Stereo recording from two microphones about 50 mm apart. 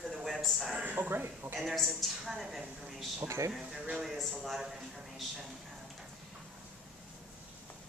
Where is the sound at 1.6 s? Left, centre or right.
Centre.